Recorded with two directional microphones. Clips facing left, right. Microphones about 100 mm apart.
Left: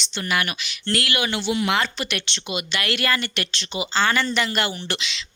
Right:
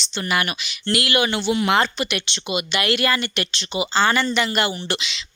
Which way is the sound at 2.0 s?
5° right (ahead or behind).